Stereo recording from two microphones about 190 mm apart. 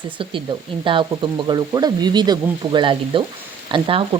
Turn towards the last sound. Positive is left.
turn(degrees=-30)  # may be behind; listen again after turning